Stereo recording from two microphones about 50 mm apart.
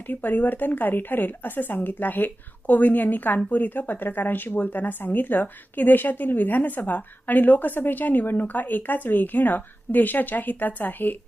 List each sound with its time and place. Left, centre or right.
0.1 s a woman's voice: left